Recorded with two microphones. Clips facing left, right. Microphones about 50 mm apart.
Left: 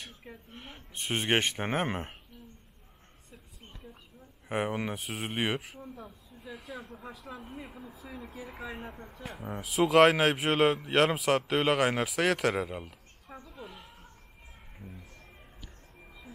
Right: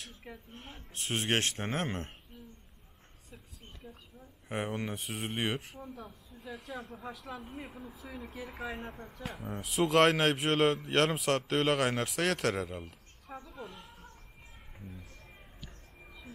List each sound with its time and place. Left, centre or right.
0.3 s speech: centre
4.5 s speech: centre
13.4 s a sound: centre